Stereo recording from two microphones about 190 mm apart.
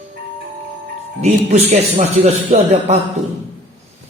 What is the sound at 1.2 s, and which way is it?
Speech, 35° right (ahead or behind).